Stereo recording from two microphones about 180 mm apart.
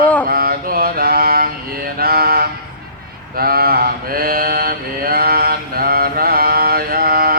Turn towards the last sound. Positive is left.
turn(degrees=-55)  # may be behind; listen again after turning